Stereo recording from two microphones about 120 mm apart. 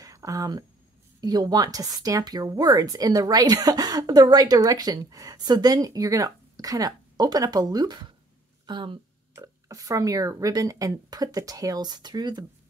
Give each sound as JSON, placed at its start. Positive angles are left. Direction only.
{"t": 0.0, "sound": "speech", "side_deg": -30}
{"t": 9.3, "sound": "speech", "side_deg": -30}